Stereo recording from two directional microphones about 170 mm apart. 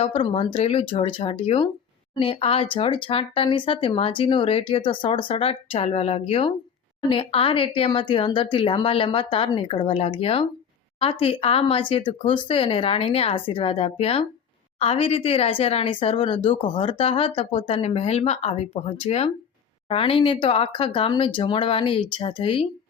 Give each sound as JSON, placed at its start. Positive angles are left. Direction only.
{"t": 0.0, "sound": "speech", "side_deg": 30}